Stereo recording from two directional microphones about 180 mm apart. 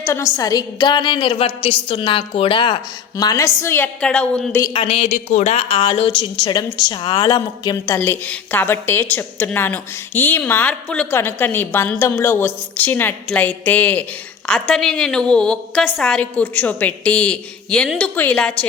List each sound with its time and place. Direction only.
0.0 s a woman's voice: 15° left (ahead or behind)
3.2 s a woman's voice: 20° left (ahead or behind)
4.6 s a woman's voice: 30° left (ahead or behind); by 18.5 s 5° left (ahead or behind)